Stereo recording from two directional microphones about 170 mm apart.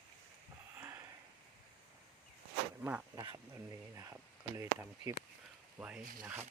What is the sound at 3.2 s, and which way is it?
Speech, 20° right (ahead or behind).